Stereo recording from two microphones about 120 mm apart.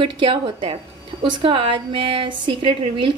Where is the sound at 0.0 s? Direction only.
45° right (ahead or behind).